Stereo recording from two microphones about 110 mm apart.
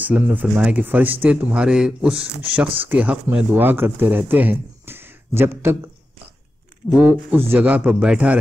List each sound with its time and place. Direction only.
0.0 s speech: 15° right (ahead or behind)
6.9 s speech: 5° right (ahead or behind)
7.3 s speech: 20° right (ahead or behind)